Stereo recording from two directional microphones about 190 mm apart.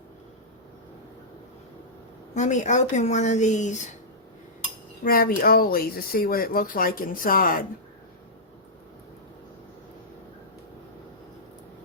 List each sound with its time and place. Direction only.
2.3 s a woman's voice: 40° left (ahead or behind)
5.0 s speech: 50° left (ahead or behind)